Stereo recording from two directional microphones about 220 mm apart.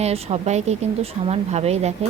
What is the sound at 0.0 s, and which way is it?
Speech, 30° right (ahead or behind).